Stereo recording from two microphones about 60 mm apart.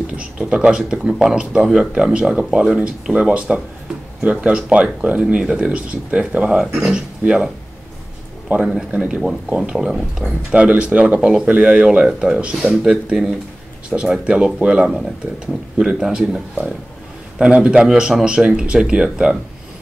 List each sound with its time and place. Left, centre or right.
0.0 s speech: centre
8.5 s speech: centre
10.5 s speech: right
11.1 s speech: centre
11.4 s speech: centre